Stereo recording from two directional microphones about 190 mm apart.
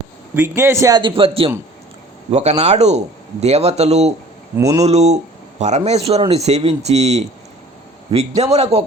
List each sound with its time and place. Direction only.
0.3 s a man's voice: 10° right (ahead or behind); by 4.1 s 35° right (ahead or behind)
4.5 s speech: 15° right (ahead or behind)
4.8 s speech: 35° right (ahead or behind)
8.3 s speech: 35° right (ahead or behind)